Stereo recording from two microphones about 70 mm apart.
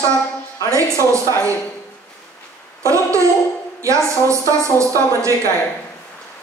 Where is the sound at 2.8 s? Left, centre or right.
Right.